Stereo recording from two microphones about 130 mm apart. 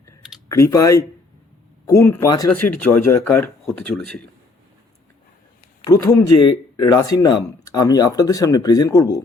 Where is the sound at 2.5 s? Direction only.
15° left (ahead or behind).